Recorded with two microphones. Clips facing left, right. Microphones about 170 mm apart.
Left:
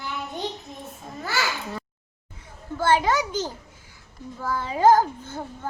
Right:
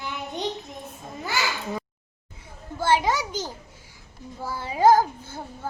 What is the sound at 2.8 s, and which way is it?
Speech, 10° right (ahead or behind).